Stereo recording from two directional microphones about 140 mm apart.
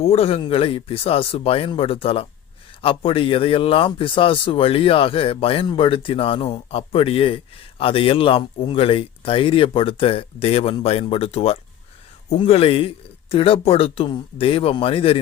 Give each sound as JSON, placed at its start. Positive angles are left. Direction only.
{"t": 0.0, "sound": "speech", "side_deg": 45}